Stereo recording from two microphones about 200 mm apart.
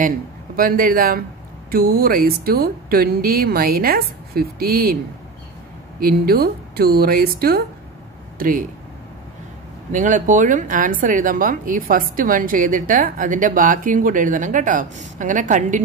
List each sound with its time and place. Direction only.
0.6 s speech: 45° right (ahead or behind)
5.9 s speech: 50° right (ahead or behind)
9.9 s a woman's voice: 40° right (ahead or behind)